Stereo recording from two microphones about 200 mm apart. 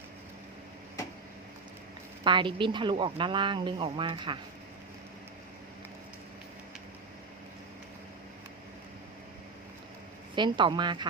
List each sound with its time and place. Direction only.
2.2 s speech: 25° right (ahead or behind)
10.3 s speech: 25° right (ahead or behind)